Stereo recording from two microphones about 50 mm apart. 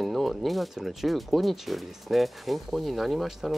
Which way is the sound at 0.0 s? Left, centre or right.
Centre.